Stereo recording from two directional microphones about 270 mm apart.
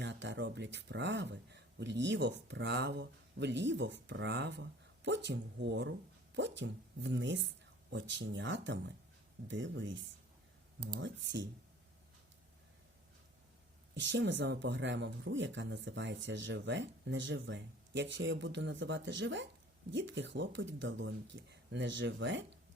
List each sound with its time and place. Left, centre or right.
0.0 s speech: right
13.9 s speech: right